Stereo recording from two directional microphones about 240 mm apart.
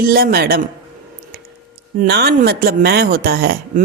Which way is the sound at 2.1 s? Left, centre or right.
Right.